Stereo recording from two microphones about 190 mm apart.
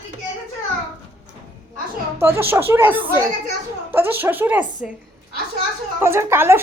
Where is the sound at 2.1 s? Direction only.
10° right (ahead or behind).